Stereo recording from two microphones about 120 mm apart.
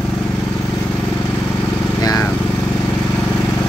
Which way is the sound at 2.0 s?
30° left (ahead or behind).